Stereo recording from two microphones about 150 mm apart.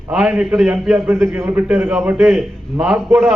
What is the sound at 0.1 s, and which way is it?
A man's voice, 5° right (ahead or behind).